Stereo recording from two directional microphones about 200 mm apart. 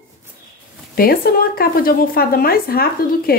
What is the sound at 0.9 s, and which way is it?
A woman's voice, 50° left (ahead or behind).